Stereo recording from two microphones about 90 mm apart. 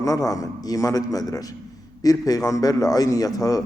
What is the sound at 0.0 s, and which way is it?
A man's voice, 40° left (ahead or behind).